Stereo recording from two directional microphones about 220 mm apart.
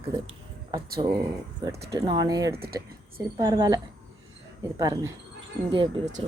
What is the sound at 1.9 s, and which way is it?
Speech, 20° right (ahead or behind).